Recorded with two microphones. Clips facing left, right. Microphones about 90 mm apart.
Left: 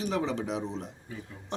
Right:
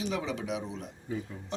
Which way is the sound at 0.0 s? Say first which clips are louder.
Left 3 dB; 40° left (ahead or behind).